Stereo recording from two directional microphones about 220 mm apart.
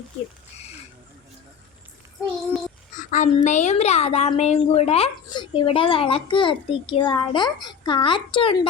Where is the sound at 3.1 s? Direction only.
35° left (ahead or behind).